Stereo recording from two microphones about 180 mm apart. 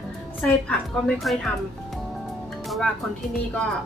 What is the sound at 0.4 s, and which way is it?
A woman's voice, 5° left (ahead or behind).